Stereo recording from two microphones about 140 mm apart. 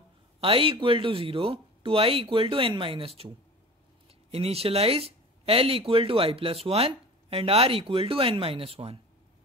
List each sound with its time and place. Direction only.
0.4 s speech: 40° right (ahead or behind)
4.3 s speech: 45° right (ahead or behind)